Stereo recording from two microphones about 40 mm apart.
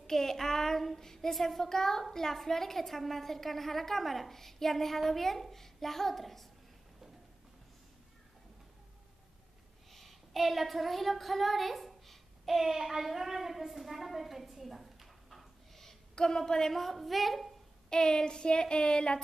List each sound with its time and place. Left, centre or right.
0.0 s a woman's voice: centre
9.8 s child singing: centre
17.8 s a sound: centre